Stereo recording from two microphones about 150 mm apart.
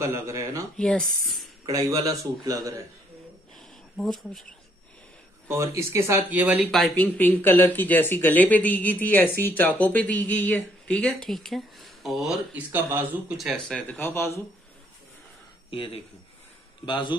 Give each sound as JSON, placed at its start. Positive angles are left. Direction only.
{"t": 0.0, "sound": "a man's voice", "side_deg": -20}
{"t": 0.7, "sound": "speech", "side_deg": 5}
{"t": 1.7, "sound": "a man's voice", "side_deg": -20}
{"t": 3.5, "sound": "a sound", "side_deg": 0}
{"t": 5.5, "sound": "speech", "side_deg": -20}
{"t": 6.7, "sound": "speech", "side_deg": 5}
{"t": 13.4, "sound": "speech", "side_deg": 0}
{"t": 15.7, "sound": "speech", "side_deg": 35}